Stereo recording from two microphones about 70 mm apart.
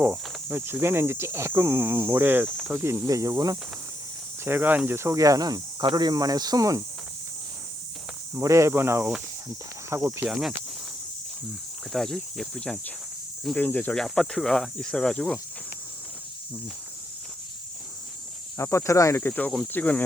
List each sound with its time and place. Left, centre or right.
0.0 s speech: right
3.1 s speech: right
4.4 s speech: right
4.9 s speech: right
8.4 s speech: right
10.2 s speech: centre
11.9 s speech: centre
13.6 s speech: left
13.9 s speech: centre
18.5 s speech: left
19.2 s speech: left